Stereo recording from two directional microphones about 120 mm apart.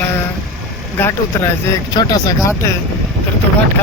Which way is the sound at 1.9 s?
35° left (ahead or behind).